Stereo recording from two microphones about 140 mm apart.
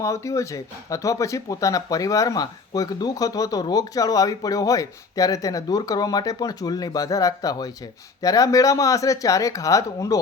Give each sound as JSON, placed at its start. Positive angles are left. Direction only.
{"t": 0.0, "sound": "speech", "side_deg": 20}